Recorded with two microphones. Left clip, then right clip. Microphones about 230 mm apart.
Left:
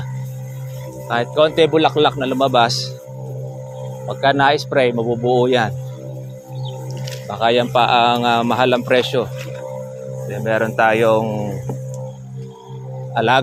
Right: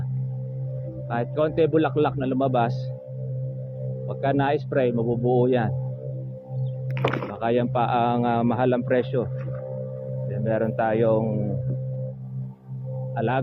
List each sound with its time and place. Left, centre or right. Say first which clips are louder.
1.0 s speech: left 9 dB; centre
4.1 s speech: left 9 dB; centre
7.3 s speech: left 11 dB; centre
10.4 s speech: left 8 dB; centre
13.1 s speech: left 11 dB; left